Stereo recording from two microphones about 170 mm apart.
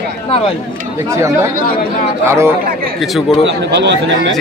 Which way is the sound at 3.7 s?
90° right.